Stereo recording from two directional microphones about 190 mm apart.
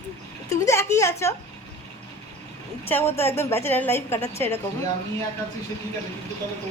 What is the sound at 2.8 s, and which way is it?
Speech, 10° left (ahead or behind).